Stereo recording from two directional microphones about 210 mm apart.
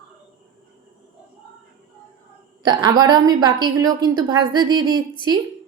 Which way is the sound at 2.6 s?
20° right (ahead or behind).